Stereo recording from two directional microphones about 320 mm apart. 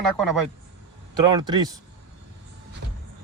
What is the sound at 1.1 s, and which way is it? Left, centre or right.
Speech, centre.